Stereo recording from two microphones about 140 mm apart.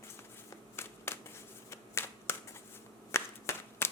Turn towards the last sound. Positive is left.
turn(degrees=20)  # may be behind; listen again after turning